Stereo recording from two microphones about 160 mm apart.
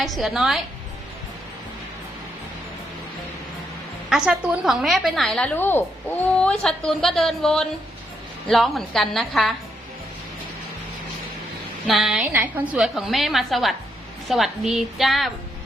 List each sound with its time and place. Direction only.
0.0 s a woman's voice: centre (ahead or behind)
4.1 s a woman's voice: 5° right (ahead or behind)
11.9 s a woman's voice: centre (ahead or behind)
12.2 s a woman's voice: 15° right (ahead or behind)